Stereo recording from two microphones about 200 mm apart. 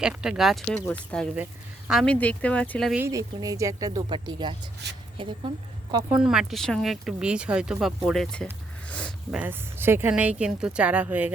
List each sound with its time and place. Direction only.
0.0 s speech: 5° right (ahead or behind)
2.9 s speech: 15° right (ahead or behind)
5.9 s speech: 20° right (ahead or behind)
6.2 s speech: centre (ahead or behind)
8.9 s a sound: 5° left (ahead or behind)
9.4 s speech: 10° right (ahead or behind)